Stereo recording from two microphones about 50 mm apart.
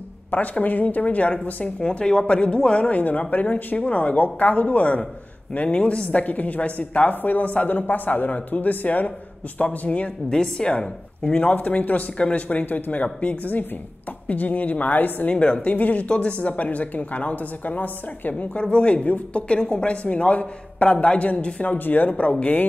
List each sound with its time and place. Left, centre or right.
0.3 s a woman's voice: left
1.8 s a woman's voice: centre
10.3 s speech: centre
11.3 s a woman's voice: left
15.3 s speech: left
21.7 s a woman's voice: left